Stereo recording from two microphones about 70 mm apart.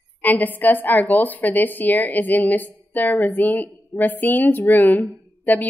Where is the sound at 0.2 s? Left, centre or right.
Left.